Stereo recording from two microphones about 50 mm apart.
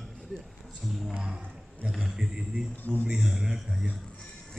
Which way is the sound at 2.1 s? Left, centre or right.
Centre.